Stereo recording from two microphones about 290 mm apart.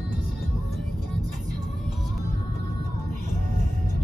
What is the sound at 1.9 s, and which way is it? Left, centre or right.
Music, centre.